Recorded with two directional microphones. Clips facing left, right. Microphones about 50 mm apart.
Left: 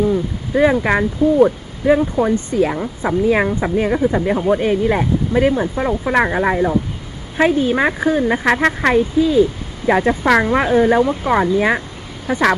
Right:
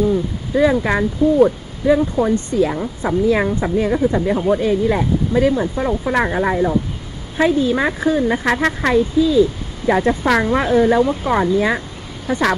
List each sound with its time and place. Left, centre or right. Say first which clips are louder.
0.1 s speech: even; left
12.3 s speech: left 1 dB; left